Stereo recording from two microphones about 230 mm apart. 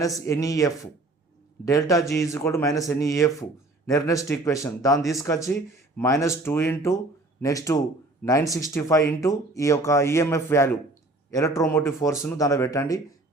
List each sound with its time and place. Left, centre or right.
0.2 s speech: centre